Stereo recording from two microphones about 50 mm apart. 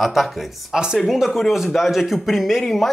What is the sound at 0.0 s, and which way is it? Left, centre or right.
Speech, centre.